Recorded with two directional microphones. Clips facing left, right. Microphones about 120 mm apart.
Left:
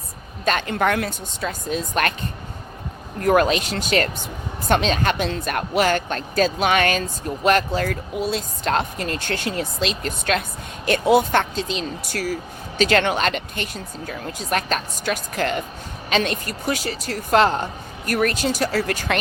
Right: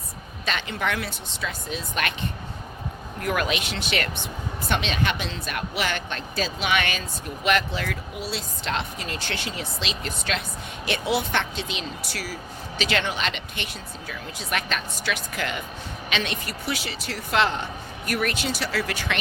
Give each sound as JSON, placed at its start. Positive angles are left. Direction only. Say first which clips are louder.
{"t": 0.4, "sound": "speech", "louder": "left 7 dB", "side_deg": 45}
{"t": 3.2, "sound": "speech", "louder": "left 8 dB", "side_deg": 40}